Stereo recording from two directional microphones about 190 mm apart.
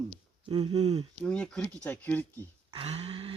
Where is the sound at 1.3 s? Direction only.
5° left (ahead or behind).